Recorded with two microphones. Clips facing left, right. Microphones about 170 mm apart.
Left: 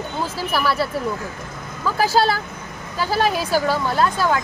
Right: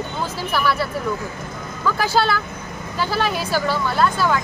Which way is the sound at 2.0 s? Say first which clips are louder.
Left 3 dB; 40° left (ahead or behind).